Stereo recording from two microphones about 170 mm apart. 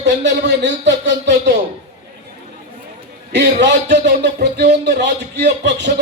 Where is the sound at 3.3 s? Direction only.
90° right.